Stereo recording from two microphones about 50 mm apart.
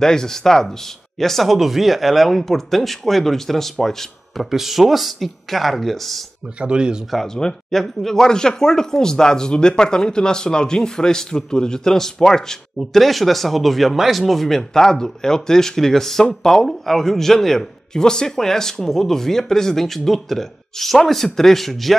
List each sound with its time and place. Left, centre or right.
0.0 s speech: centre
6.6 s speech: centre
7.1 s a man's voice: centre